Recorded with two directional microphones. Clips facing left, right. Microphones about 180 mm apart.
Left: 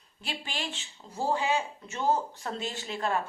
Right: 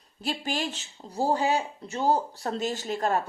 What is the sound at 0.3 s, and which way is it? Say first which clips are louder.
A woman's voice: right 7 dB; 40° right (ahead or behind).